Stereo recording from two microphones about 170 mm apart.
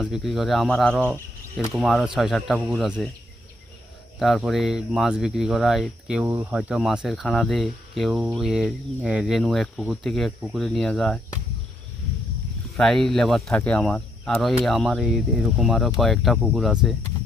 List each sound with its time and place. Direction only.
0.0 s speech: centre (ahead or behind)
4.2 s speech: centre (ahead or behind)
12.7 s speech: centre (ahead or behind)